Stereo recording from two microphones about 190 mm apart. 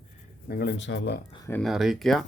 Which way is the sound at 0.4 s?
55° left (ahead or behind).